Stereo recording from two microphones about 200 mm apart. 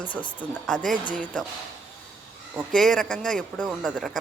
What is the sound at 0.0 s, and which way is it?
Speech, 25° left (ahead or behind).